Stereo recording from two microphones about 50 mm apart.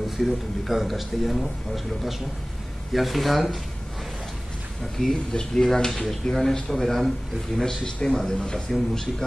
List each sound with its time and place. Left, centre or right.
0.2 s a man's voice: centre
2.9 s a man's voice: centre
4.9 s a man's voice: centre